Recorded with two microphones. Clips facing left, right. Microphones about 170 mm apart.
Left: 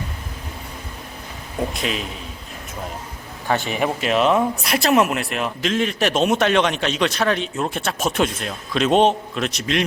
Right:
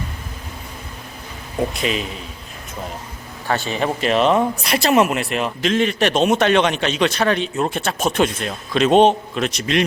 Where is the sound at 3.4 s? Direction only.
15° left (ahead or behind).